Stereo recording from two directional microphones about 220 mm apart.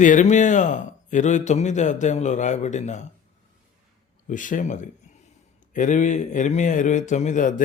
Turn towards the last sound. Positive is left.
turn(degrees=35)  # may be behind; listen again after turning